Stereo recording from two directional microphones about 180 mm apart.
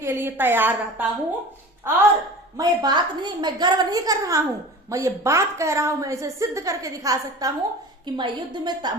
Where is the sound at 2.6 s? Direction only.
25° right (ahead or behind).